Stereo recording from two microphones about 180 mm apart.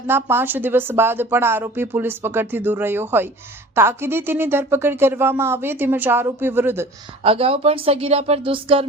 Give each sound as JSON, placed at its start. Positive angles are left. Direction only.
{"t": 0.1, "sound": "a woman's voice", "side_deg": -15}
{"t": 7.2, "sound": "speech", "side_deg": -30}